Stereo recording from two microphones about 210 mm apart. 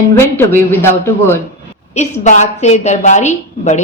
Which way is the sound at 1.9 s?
35° left (ahead or behind).